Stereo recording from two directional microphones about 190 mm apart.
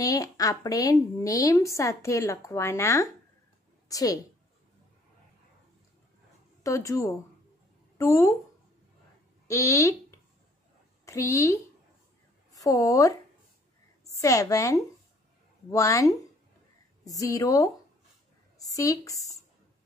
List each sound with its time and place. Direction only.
0.0 s a woman's voice: 20° left (ahead or behind)
6.6 s a woman's voice: 15° left (ahead or behind)
9.5 s a woman's voice: 15° left (ahead or behind)
11.1 s a woman's voice: 15° left (ahead or behind)
14.1 s a woman's voice: 15° left (ahead or behind)